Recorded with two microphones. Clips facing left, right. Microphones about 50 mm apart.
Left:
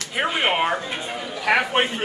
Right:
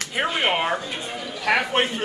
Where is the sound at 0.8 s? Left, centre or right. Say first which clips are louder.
Left 2 dB; centre.